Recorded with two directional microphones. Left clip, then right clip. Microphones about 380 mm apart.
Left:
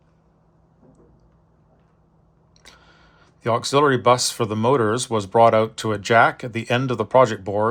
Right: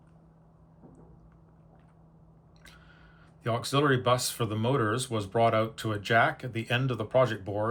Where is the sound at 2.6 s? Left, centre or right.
Centre.